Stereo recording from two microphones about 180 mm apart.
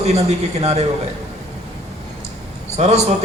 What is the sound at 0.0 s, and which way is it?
Speech, 35° right (ahead or behind).